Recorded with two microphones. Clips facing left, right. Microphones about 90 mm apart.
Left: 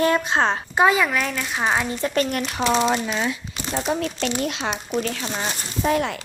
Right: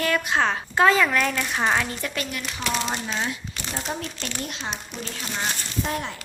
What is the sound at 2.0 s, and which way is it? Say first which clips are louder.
Speech: left 8 dB; 30° left (ahead or behind).